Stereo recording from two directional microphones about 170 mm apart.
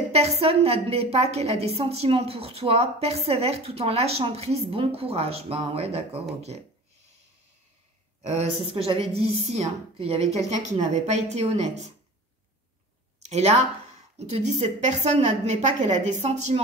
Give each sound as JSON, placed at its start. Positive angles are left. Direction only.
{"t": 0.1, "sound": "a woman's voice", "side_deg": -40}
{"t": 8.2, "sound": "a woman's voice", "side_deg": -40}
{"t": 13.2, "sound": "a sound", "side_deg": -40}
{"t": 14.1, "sound": "a woman's voice", "side_deg": -40}